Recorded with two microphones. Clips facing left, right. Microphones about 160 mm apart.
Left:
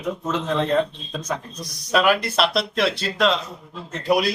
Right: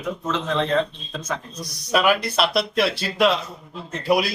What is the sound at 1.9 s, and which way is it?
Speech, centre (ahead or behind).